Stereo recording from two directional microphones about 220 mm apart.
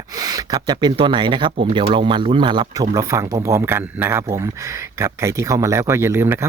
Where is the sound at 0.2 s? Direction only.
15° right (ahead or behind).